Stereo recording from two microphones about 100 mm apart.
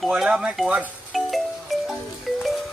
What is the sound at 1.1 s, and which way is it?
Music, centre (ahead or behind).